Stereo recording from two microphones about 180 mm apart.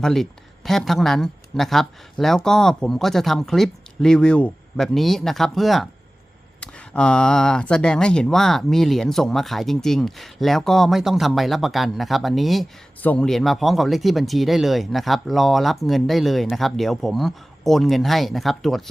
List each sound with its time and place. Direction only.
0.0 s speech: centre (ahead or behind)